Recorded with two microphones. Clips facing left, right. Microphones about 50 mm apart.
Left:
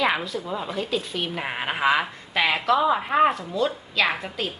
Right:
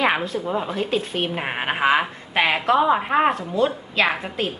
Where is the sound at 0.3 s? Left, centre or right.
Right.